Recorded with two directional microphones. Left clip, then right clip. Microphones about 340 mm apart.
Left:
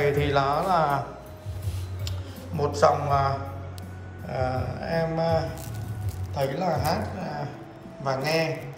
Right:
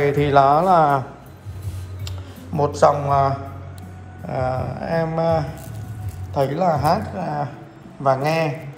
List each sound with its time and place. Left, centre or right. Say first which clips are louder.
0.2 s speech: right 9 dB; centre
2.0 s speech: right 3 dB; centre